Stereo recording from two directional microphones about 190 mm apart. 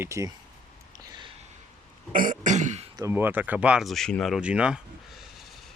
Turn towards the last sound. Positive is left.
turn(degrees=0)  # may be behind; listen again after turning